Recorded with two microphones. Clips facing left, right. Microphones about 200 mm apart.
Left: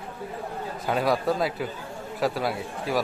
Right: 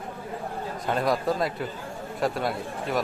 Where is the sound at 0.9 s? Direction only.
Centre (ahead or behind).